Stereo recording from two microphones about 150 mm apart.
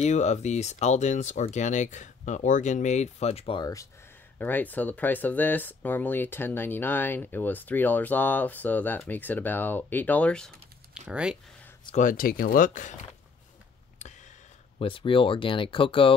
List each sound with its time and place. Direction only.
0.0 s speech: 50° left (ahead or behind)
4.4 s speech: 10° left (ahead or behind)
11.1 s speech: 5° right (ahead or behind)
11.9 s speech: 60° left (ahead or behind)
14.8 s speech: 35° left (ahead or behind)